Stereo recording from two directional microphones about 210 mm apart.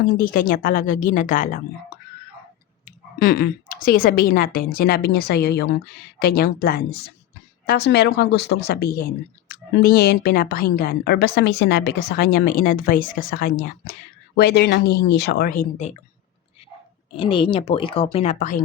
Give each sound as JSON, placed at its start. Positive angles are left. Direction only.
{"t": 0.0, "sound": "speech", "side_deg": 40}
{"t": 2.8, "sound": "a woman's voice", "side_deg": 45}
{"t": 17.2, "sound": "speech", "side_deg": 25}